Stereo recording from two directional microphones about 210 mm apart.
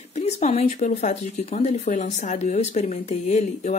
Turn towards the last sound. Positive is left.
turn(degrees=35)  # may be behind; listen again after turning